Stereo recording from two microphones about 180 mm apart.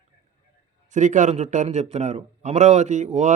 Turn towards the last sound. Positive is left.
turn(degrees=-40)  # may be behind; listen again after turning